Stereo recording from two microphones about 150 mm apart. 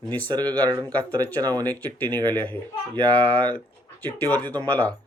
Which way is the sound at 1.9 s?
10° left (ahead or behind).